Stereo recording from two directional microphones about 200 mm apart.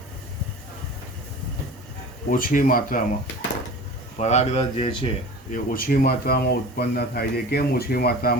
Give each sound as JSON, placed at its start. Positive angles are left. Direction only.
{"t": 2.3, "sound": "speech", "side_deg": 45}
{"t": 4.2, "sound": "speech", "side_deg": 35}
{"t": 5.5, "sound": "speech", "side_deg": 45}